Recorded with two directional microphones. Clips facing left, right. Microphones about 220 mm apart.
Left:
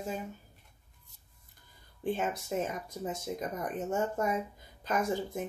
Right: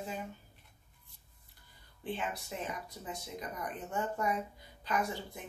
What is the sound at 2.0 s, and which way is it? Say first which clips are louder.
Speech: left 6 dB; 45° left (ahead or behind).